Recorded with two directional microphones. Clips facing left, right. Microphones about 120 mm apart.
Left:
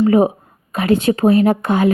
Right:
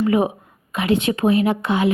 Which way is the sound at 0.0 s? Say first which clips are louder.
Left 5 dB; 40° left (ahead or behind).